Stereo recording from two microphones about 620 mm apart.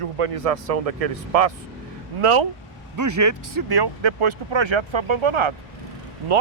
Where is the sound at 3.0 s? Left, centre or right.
Right.